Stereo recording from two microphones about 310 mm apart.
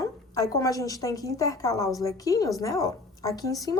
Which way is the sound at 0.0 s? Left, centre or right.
Centre.